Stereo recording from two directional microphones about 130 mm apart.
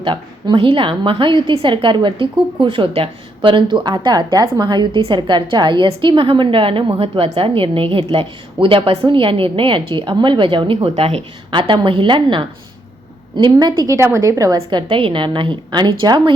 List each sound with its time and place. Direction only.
0.0 s a woman's voice: 40° right (ahead or behind)